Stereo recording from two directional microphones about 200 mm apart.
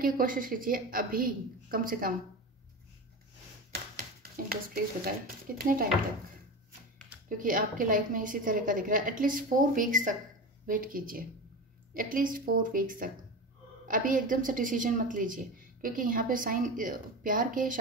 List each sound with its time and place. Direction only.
0.0 s a woman's voice: 45° right (ahead or behind)
3.9 s speech: 45° right (ahead or behind)
7.2 s a woman's voice: 45° right (ahead or behind)